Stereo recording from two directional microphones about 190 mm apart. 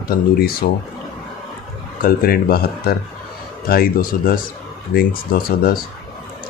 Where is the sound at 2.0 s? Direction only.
50° left (ahead or behind).